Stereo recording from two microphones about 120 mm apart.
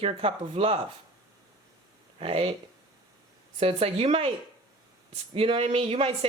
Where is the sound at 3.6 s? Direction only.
50° right (ahead or behind).